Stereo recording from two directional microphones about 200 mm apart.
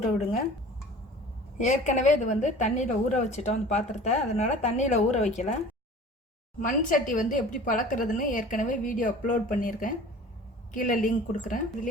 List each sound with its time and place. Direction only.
1.5 s a woman's voice: 35° left (ahead or behind)
6.6 s a woman's voice: 40° left (ahead or behind)